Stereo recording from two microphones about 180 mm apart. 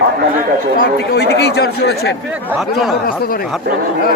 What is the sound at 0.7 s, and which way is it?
Speech, 60° left (ahead or behind).